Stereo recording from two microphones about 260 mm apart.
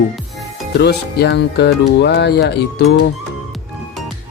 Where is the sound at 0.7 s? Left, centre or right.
Left.